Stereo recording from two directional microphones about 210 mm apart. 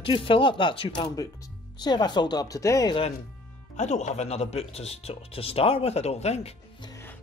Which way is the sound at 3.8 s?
35° left (ahead or behind).